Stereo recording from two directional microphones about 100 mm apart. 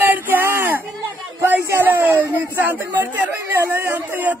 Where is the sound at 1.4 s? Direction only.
20° right (ahead or behind).